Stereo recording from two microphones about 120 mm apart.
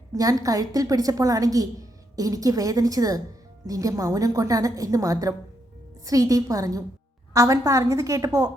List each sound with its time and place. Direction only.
0.1 s a woman's voice: 30° right (ahead or behind)